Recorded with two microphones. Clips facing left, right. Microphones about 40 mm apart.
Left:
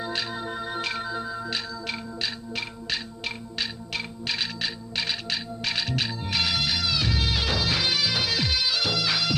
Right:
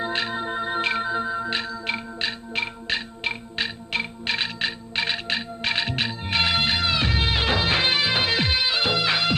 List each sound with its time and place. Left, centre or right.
0.0 s music: right